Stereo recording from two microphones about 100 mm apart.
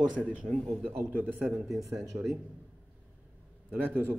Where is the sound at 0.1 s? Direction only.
10° right (ahead or behind).